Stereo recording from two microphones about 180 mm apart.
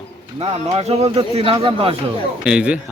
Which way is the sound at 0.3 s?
35° right (ahead or behind).